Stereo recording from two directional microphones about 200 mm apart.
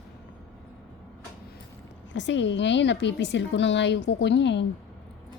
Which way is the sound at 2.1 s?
65° left (ahead or behind).